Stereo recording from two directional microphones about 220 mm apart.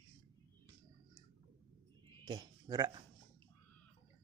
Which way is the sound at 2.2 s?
20° right (ahead or behind).